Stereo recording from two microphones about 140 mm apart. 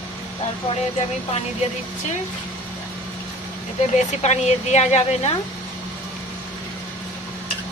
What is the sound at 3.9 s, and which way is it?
A woman's voice, 55° left (ahead or behind).